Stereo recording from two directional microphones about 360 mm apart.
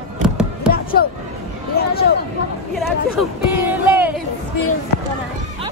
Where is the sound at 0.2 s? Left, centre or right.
Right.